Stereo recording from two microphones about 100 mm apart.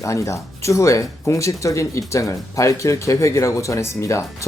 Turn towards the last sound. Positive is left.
turn(degrees=30)  # may be behind; listen again after turning